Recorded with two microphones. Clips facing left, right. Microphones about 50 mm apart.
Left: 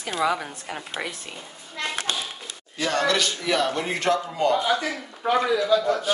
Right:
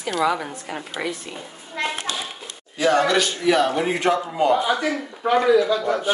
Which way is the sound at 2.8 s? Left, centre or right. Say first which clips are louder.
Right 5 dB; centre.